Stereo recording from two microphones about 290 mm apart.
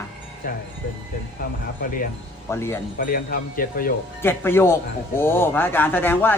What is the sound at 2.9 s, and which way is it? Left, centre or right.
Speech, left.